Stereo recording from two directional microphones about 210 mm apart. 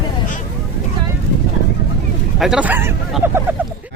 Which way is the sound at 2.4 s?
5° right (ahead or behind).